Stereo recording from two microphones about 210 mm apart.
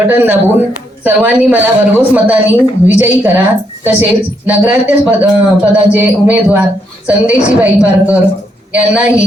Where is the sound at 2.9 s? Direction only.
10° right (ahead or behind).